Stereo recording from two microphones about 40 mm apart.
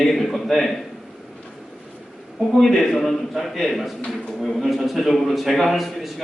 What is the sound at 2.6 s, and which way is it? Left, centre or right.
A man's voice, centre.